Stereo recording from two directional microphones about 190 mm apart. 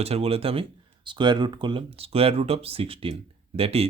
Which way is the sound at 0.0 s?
30° right (ahead or behind).